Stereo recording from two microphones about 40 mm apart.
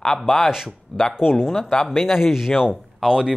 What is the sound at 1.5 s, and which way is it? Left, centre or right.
Speech, centre.